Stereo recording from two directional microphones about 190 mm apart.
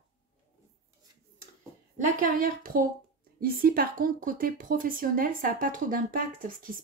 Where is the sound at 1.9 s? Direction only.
45° right (ahead or behind).